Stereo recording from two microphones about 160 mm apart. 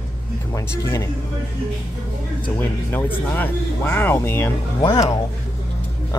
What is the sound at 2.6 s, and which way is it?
Speech, 10° left (ahead or behind).